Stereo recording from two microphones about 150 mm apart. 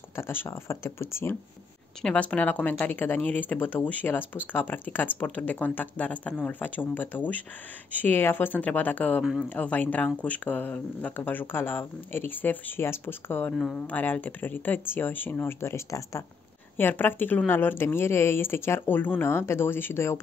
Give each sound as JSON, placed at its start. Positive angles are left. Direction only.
{"t": 0.1, "sound": "speech", "side_deg": 15}
{"t": 2.0, "sound": "speech", "side_deg": 5}
{"t": 9.2, "sound": "speech", "side_deg": -5}
{"t": 9.5, "sound": "speech", "side_deg": 10}